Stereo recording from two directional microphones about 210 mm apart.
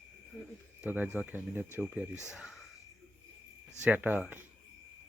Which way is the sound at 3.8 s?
5° right (ahead or behind).